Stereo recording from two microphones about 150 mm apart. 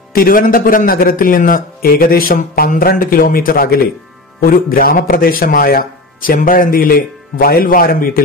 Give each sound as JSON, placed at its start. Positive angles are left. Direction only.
{"t": 0.1, "sound": "a man's voice", "side_deg": 75}